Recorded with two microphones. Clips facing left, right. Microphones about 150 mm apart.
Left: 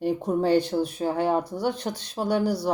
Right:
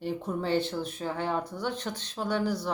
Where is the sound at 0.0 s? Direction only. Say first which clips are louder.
Left 8 dB; 40° left (ahead or behind).